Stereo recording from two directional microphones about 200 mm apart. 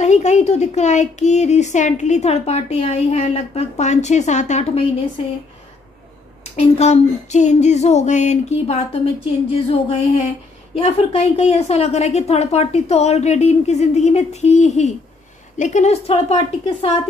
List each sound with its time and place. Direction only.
0.0 s speech: 35° left (ahead or behind)
6.5 s speech: 35° left (ahead or behind)
9.7 s music: 30° left (ahead or behind)
10.7 s speech: 30° left (ahead or behind)